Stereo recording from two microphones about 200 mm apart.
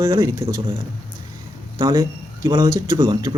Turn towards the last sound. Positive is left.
turn(degrees=-20)  # may be behind; listen again after turning